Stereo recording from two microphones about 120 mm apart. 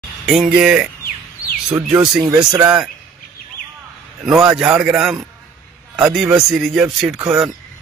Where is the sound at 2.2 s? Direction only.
30° right (ahead or behind).